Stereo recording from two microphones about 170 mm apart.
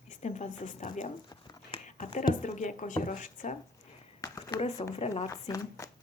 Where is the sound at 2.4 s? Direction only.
45° left (ahead or behind).